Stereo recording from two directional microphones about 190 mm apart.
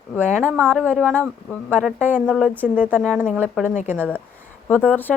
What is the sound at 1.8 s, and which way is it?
Speech, 5° right (ahead or behind).